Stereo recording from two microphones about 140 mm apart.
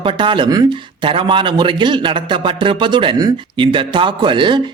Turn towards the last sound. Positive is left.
turn(degrees=-35)  # may be behind; listen again after turning